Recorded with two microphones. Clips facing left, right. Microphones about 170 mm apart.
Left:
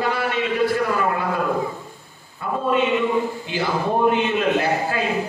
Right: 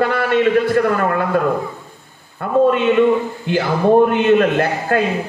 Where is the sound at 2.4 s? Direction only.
55° right (ahead or behind).